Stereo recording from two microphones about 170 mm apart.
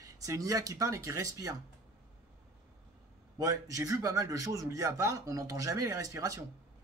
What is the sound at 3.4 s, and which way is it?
Speech, 20° right (ahead or behind).